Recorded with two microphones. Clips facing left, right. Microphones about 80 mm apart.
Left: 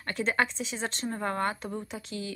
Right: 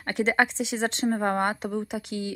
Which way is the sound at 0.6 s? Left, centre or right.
Right.